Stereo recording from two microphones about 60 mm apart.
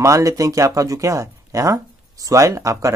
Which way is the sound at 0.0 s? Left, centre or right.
Right.